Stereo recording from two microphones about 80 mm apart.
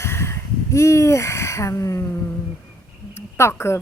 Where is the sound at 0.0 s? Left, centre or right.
Left.